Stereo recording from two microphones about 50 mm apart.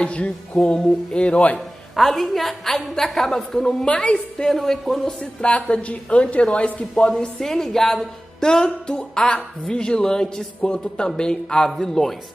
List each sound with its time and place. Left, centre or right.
0.0 s a woman's voice: left
2.0 s a woman's voice: centre
3.6 s speech: centre
4.5 s a woman's voice: centre
5.2 s a woman's voice: left; by 12.2 s centre